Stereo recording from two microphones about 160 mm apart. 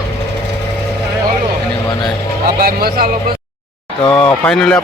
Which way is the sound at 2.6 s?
70° right (ahead or behind).